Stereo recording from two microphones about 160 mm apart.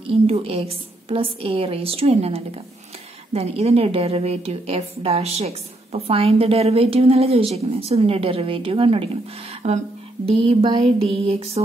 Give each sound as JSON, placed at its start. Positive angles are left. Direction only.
{"t": 0.0, "sound": "a woman's voice", "side_deg": -35}